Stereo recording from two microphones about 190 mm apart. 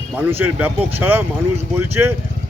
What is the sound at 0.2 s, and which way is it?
A man's voice, 10° right (ahead or behind).